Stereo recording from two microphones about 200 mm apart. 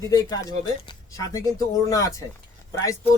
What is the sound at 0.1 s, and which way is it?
Speech, 20° left (ahead or behind).